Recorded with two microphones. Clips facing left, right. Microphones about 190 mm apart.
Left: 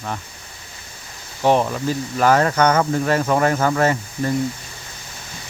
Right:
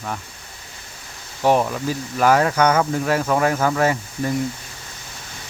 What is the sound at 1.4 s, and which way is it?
Speech, 5° right (ahead or behind).